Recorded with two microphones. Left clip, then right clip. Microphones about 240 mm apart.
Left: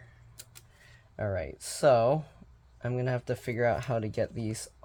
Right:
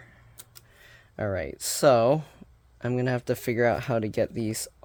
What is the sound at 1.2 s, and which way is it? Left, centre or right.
Speech, right.